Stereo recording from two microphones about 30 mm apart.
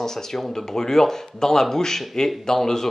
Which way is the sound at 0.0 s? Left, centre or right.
Centre.